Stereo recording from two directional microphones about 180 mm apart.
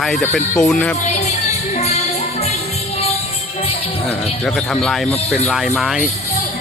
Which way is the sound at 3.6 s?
35° left (ahead or behind).